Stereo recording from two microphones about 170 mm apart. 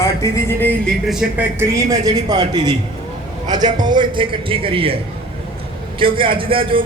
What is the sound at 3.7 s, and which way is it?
A man's voice, 25° right (ahead or behind).